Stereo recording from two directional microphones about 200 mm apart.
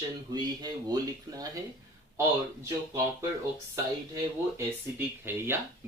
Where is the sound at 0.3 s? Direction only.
20° right (ahead or behind).